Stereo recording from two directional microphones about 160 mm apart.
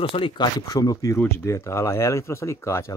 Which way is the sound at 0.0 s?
30° left (ahead or behind).